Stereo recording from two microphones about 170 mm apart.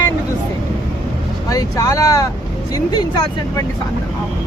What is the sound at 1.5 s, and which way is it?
Speech, 20° left (ahead or behind).